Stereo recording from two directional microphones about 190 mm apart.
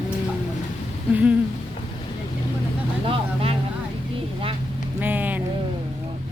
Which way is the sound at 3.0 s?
30° right (ahead or behind).